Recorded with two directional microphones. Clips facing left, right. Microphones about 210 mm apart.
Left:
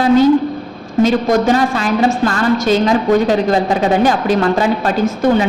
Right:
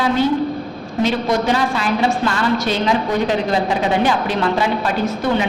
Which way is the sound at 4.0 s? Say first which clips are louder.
Left 4 dB; 45° left (ahead or behind).